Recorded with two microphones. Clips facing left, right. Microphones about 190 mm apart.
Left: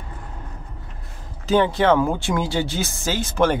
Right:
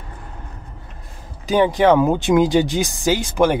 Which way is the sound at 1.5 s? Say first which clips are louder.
Right 3 dB; 15° right (ahead or behind).